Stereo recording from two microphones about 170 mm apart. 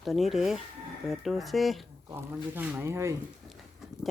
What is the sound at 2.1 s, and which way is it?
Speech, 10° right (ahead or behind).